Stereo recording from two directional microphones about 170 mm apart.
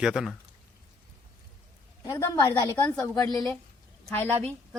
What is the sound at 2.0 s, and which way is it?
Speech, 15° left (ahead or behind).